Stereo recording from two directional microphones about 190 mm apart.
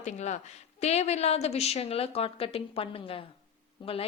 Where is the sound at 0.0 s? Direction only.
35° left (ahead or behind).